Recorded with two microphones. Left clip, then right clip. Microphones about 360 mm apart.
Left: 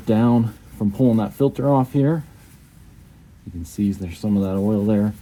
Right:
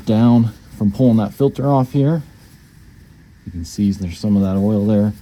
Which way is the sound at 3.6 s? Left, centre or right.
Right.